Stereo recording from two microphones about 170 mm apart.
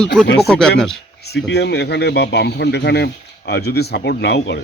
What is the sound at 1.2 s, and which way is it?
Speech, 75° left (ahead or behind).